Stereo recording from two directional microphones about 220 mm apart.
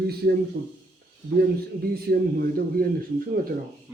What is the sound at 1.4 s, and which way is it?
A man's voice, 45° right (ahead or behind).